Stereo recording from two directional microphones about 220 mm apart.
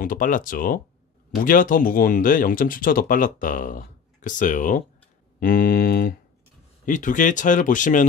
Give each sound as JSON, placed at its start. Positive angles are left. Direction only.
{"t": 0.0, "sound": "speech", "side_deg": 40}
{"t": 5.4, "sound": "mantra", "side_deg": 40}
{"t": 6.9, "sound": "speech", "side_deg": 35}